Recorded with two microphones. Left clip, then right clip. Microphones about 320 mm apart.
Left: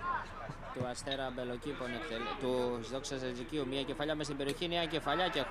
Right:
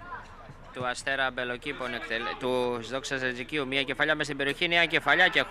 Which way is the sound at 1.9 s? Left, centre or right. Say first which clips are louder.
Right 7 dB; centre.